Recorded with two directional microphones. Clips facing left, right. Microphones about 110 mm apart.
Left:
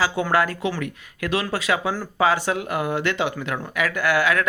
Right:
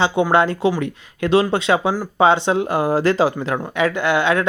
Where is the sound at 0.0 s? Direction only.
25° right (ahead or behind).